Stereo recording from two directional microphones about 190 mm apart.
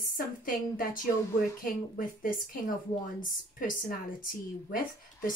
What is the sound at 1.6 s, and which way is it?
Speech, 45° left (ahead or behind).